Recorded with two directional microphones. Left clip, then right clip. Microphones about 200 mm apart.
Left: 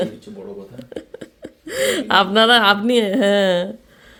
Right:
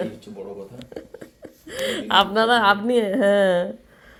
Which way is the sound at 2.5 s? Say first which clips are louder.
Left 4 dB; 30° left (ahead or behind).